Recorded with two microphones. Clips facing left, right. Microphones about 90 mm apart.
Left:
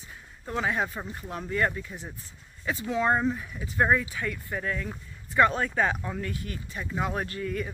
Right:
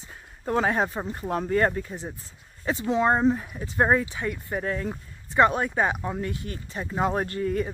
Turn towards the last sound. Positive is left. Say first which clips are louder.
# right 5 dB
turn(degrees=-35)  # may be behind; listen again after turning